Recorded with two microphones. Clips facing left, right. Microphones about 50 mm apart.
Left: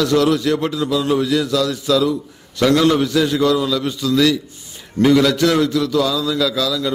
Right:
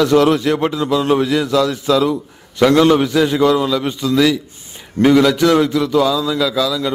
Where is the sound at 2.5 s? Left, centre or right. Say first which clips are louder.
Right 3 dB; right.